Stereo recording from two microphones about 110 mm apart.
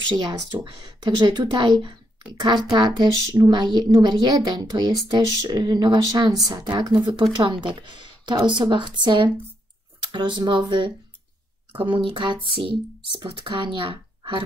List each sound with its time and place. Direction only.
0.1 s speech: 45° right (ahead or behind)